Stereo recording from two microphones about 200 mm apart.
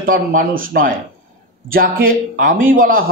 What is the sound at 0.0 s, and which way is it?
Speech, 45° right (ahead or behind).